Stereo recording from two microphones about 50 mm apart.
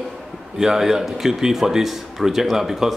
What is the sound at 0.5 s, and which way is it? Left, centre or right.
Speech, centre.